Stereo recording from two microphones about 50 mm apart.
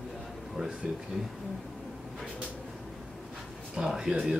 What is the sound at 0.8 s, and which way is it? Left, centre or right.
Speech, centre.